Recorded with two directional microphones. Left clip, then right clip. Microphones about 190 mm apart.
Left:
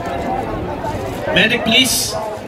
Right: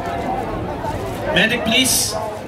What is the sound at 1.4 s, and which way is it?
Speech, 40° right (ahead or behind).